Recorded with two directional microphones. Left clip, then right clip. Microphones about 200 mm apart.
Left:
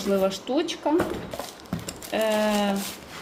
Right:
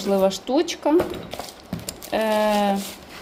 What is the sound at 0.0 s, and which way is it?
A woman's voice, 20° right (ahead or behind).